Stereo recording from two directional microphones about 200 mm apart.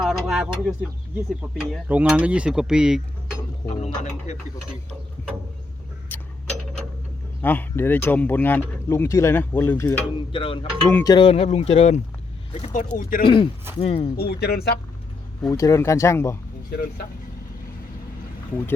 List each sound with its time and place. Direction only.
0.0 s speech: centre (ahead or behind)
4.3 s speech: 35° left (ahead or behind)
6.1 s clock: 10° left (ahead or behind)
7.4 s speech: 10° left (ahead or behind)
10.3 s speech: 25° left (ahead or behind)
10.8 s speech: 15° left (ahead or behind); by 13.2 s 45° left (ahead or behind)
13.2 s speech: 25° left (ahead or behind)
14.2 s speech: 50° left (ahead or behind)
15.4 s speech: 15° left (ahead or behind)